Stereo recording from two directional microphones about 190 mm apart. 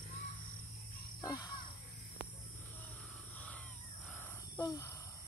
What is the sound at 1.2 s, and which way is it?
Speech, 20° left (ahead or behind).